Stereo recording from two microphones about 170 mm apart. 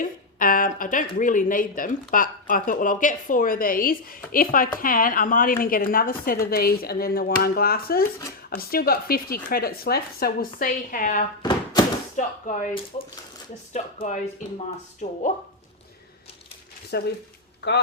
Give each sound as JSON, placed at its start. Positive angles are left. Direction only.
{"t": 0.0, "sound": "speech", "side_deg": 55}
{"t": 11.4, "sound": "thunk", "side_deg": 25}
{"t": 12.1, "sound": "speech", "side_deg": 45}
{"t": 16.9, "sound": "speech", "side_deg": 70}
{"t": 17.6, "sound": "speech", "side_deg": 90}